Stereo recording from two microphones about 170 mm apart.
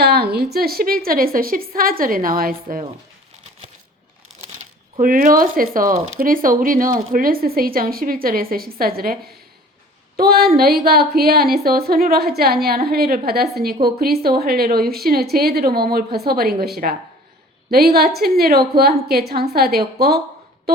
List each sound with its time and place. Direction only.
0.0 s a woman's voice: 70° right (ahead or behind)
4.9 s speech: 55° right (ahead or behind)
10.2 s speech: 65° right (ahead or behind)